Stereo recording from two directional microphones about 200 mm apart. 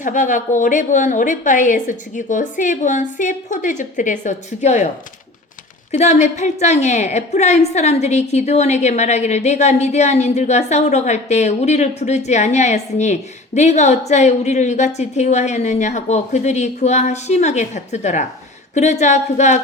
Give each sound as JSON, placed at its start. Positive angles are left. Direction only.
{"t": 0.0, "sound": "a woman's voice", "side_deg": 40}
{"t": 5.9, "sound": "a woman's voice", "side_deg": 35}